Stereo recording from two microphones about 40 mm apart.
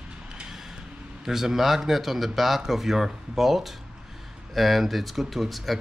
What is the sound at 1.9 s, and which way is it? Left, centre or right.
Speech, centre.